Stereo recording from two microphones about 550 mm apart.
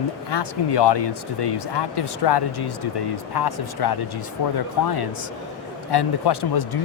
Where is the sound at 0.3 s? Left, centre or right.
Left.